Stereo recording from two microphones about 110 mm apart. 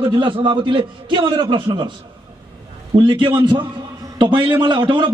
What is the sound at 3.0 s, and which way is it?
A man's voice, 45° right (ahead or behind).